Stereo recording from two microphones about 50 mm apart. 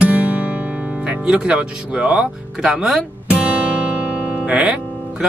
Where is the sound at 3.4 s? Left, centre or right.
Right.